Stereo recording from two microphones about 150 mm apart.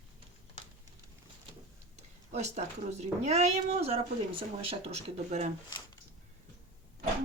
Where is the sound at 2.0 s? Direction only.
50° right (ahead or behind).